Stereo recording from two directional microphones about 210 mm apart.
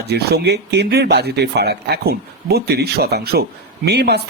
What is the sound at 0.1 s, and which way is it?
Speech, 50° right (ahead or behind).